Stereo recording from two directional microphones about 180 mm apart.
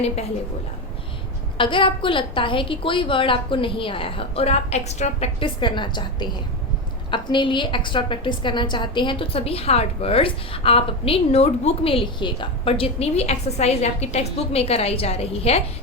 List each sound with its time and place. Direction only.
1.5 s a woman's voice: 30° left (ahead or behind)